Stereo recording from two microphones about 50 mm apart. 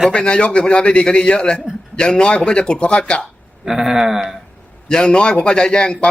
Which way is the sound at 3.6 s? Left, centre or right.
Centre.